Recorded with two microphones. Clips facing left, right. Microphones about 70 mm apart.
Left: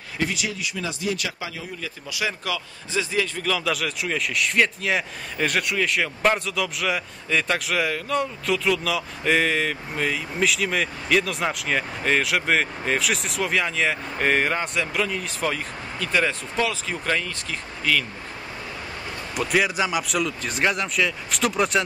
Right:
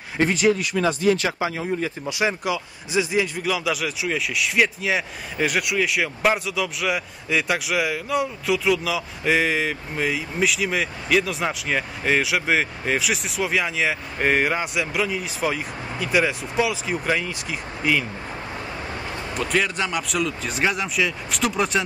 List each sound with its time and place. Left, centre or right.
0.2 s speech: right
1.1 s speech: right; by 18.0 s centre
19.3 s speech: centre